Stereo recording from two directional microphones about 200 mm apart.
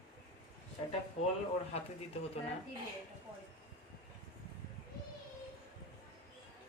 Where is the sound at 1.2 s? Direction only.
30° left (ahead or behind).